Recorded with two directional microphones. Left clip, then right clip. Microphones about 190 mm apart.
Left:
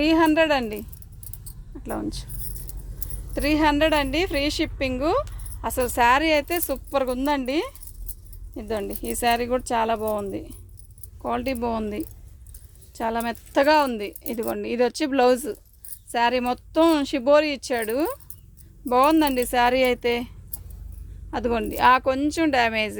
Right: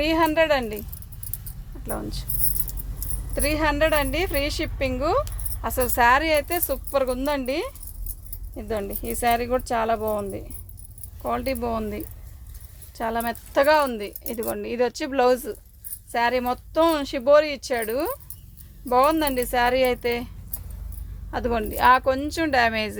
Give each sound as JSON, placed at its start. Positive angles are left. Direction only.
{"t": 0.0, "sound": "speech", "side_deg": 50}
{"t": 3.3, "sound": "speech", "side_deg": 55}